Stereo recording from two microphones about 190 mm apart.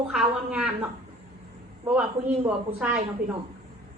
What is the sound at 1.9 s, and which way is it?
Speech, 5° right (ahead or behind).